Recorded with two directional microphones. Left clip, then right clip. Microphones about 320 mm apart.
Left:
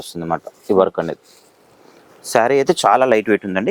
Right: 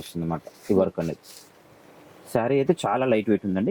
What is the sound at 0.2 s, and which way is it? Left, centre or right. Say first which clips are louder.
Speech: left 9 dB; centre.